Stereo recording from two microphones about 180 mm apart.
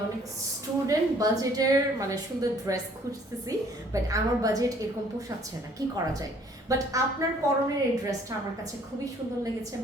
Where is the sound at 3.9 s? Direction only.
20° right (ahead or behind).